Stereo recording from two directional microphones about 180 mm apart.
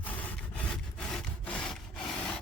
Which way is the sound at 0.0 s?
10° left (ahead or behind).